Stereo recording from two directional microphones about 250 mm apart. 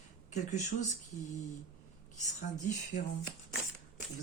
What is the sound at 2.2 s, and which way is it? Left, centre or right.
Speech, left.